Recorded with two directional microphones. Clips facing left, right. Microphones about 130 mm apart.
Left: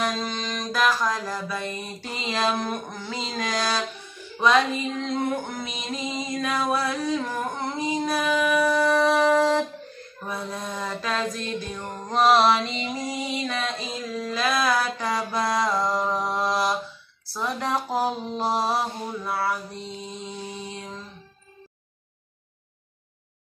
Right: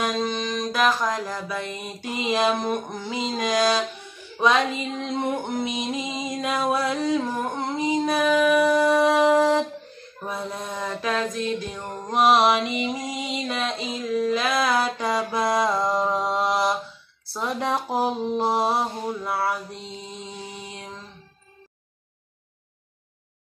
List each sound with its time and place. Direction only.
0.0 s music: 20° right (ahead or behind)
5.0 s music: 20° right (ahead or behind)
17.3 s mantra: 20° right (ahead or behind)